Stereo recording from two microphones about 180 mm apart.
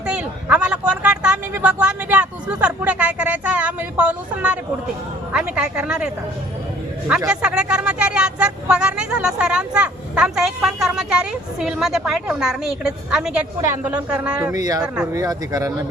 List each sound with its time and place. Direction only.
0.0 s vehicle: 5° right (ahead or behind)
5.3 s speech: 5° right (ahead or behind)
7.3 s a woman's voice: 5° right (ahead or behind)
15.1 s speech: 20° right (ahead or behind)